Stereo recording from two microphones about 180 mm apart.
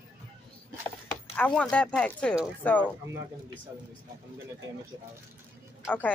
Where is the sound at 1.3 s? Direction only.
5° left (ahead or behind).